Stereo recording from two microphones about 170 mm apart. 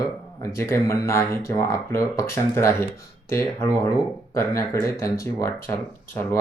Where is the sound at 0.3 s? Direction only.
20° left (ahead or behind).